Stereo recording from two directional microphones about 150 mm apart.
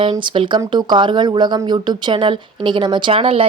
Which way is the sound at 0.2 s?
30° right (ahead or behind).